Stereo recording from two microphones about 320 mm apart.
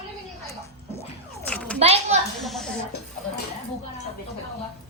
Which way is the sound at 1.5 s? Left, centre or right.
Centre.